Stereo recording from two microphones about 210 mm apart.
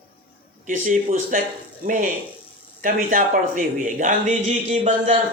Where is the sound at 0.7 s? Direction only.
40° right (ahead or behind).